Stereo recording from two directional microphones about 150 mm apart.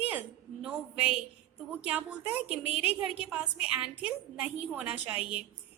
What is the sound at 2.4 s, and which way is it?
Speech, 40° left (ahead or behind).